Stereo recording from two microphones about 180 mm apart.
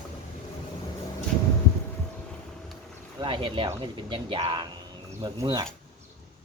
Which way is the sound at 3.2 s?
25° right (ahead or behind).